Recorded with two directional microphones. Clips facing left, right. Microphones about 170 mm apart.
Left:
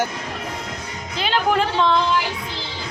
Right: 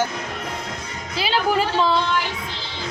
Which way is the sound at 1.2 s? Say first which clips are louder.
Left 1 dB; 5° right (ahead or behind).